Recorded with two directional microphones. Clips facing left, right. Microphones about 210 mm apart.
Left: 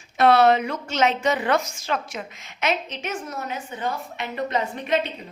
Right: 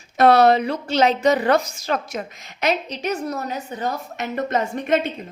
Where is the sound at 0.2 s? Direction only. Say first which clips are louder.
Right 3 dB; 40° right (ahead or behind).